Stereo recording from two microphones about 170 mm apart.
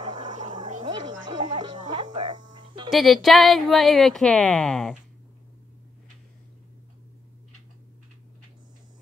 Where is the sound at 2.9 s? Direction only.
Centre (ahead or behind).